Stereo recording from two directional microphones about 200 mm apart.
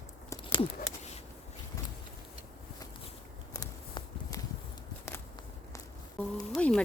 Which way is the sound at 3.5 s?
20° left (ahead or behind).